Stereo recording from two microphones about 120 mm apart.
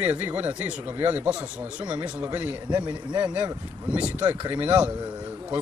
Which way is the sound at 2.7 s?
35° right (ahead or behind).